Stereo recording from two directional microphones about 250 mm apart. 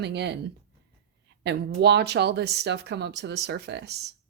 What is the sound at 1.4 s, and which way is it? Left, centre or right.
Speech, right.